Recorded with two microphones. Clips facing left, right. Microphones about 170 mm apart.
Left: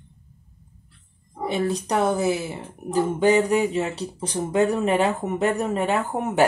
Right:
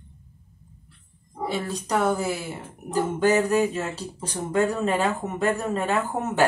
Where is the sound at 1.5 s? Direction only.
20° left (ahead or behind).